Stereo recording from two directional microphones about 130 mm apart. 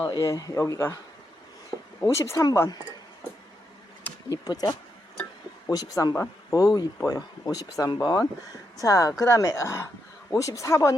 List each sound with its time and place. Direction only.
0.0 s speech: 30° left (ahead or behind)
2.0 s speech: 20° left (ahead or behind)
4.3 s speech: 30° left (ahead or behind)